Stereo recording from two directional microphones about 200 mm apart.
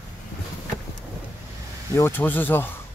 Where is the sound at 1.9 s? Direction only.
10° left (ahead or behind).